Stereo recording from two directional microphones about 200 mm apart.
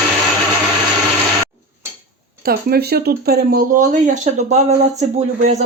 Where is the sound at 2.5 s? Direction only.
50° right (ahead or behind).